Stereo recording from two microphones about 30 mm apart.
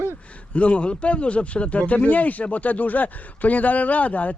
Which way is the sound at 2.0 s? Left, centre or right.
Left.